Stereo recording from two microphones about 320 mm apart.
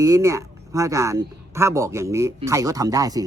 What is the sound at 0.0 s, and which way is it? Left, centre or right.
A man's voice, centre.